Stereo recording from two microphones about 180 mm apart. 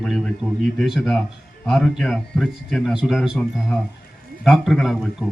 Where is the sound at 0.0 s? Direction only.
5° left (ahead or behind).